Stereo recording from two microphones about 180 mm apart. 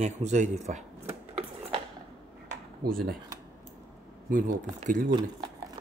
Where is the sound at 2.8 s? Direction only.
55° right (ahead or behind).